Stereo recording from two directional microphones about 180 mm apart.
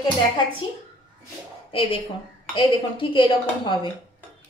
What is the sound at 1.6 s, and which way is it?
A woman's voice, 30° left (ahead or behind).